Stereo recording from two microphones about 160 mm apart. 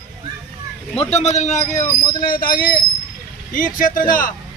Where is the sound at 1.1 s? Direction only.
45° left (ahead or behind).